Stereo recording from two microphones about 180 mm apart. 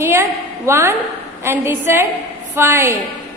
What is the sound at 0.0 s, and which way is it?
A woman's voice, 15° right (ahead or behind).